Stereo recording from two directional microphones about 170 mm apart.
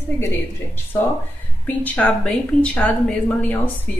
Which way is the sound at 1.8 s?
10° left (ahead or behind).